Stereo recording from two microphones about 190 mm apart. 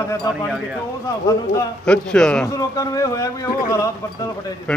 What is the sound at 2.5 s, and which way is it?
Speech, 20° left (ahead or behind).